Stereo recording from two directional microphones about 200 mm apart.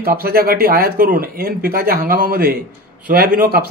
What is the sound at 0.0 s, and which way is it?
Speech, 50° right (ahead or behind).